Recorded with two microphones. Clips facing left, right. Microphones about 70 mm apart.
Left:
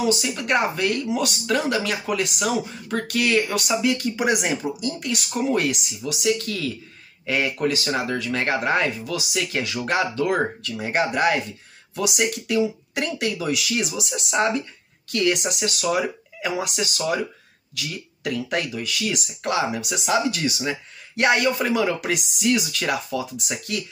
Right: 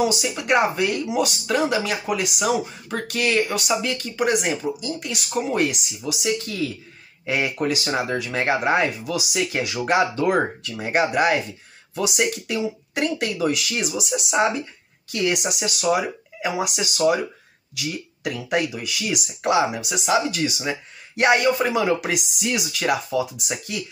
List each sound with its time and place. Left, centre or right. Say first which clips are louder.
0.0 s speech: right 1 dB; centre
10.7 s speech: right 3 dB; centre